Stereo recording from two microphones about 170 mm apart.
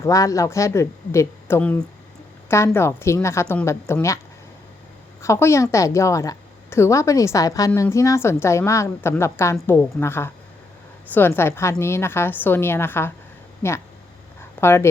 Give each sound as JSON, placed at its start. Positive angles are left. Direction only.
{"t": 0.0, "sound": "a woman's voice", "side_deg": 20}
{"t": 5.2, "sound": "a woman's voice", "side_deg": 15}